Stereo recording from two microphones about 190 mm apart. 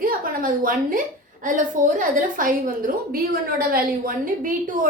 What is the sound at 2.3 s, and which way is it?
A woman's voice, 45° right (ahead or behind).